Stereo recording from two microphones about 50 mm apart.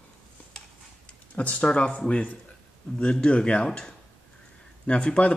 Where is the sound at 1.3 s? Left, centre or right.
Left.